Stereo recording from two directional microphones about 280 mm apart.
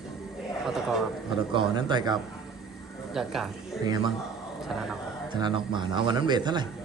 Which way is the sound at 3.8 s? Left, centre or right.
Centre.